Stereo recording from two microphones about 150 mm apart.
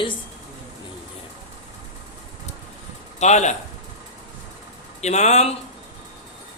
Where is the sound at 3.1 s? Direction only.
50° left (ahead or behind).